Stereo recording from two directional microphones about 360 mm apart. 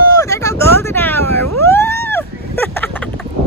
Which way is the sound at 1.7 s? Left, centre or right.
Centre.